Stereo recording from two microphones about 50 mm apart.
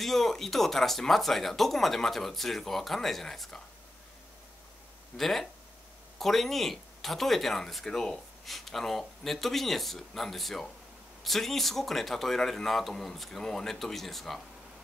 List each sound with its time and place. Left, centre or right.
0.0 s speech: centre
5.1 s speech: centre